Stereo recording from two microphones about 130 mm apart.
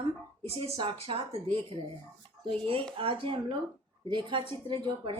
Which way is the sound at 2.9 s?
45° right (ahead or behind).